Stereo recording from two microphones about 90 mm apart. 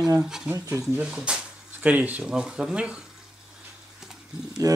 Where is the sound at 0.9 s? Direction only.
10° right (ahead or behind).